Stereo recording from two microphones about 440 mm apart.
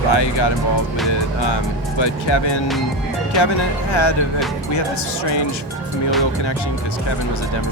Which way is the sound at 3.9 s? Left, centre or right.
Left.